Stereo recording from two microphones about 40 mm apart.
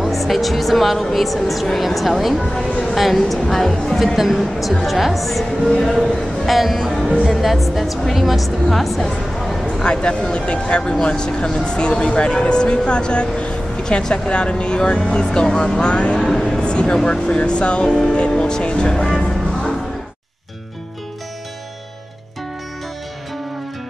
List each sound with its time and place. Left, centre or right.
0.0 s speech: centre
6.4 s speech: centre
9.4 s a sound: centre
9.8 s speech: left
16.2 s speech: centre
16.4 s speech: left